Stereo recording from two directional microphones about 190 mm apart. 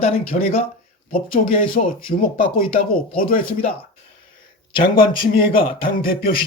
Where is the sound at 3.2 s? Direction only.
50° left (ahead or behind).